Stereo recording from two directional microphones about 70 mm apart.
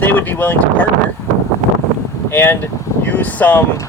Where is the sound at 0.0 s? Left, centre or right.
Left.